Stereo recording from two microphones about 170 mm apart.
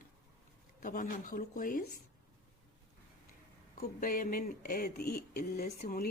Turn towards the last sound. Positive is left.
turn(degrees=60)  # may be behind; listen again after turning